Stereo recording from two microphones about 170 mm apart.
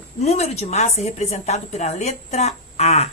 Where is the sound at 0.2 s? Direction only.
40° left (ahead or behind).